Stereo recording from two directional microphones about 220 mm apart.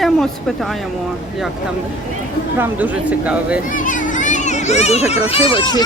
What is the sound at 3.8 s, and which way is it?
Children playing, 35° left (ahead or behind).